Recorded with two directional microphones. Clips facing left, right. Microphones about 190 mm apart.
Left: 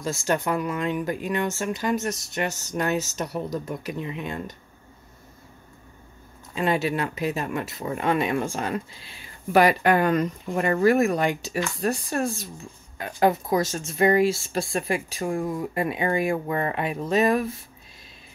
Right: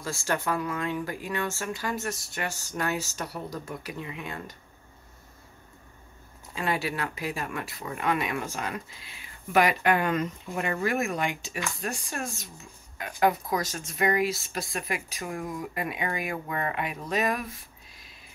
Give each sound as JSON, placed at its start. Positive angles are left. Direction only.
{"t": 0.0, "sound": "speech", "side_deg": 20}
{"t": 6.5, "sound": "speech", "side_deg": 25}